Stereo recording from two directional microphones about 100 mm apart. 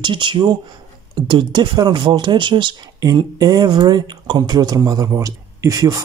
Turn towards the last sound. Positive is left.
turn(degrees=-35)  # may be behind; listen again after turning